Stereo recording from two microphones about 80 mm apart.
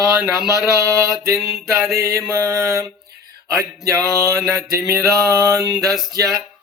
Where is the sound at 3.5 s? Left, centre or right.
Right.